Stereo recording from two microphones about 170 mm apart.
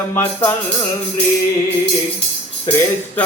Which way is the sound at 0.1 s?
15° left (ahead or behind).